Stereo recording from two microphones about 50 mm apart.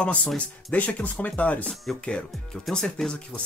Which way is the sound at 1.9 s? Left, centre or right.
Centre.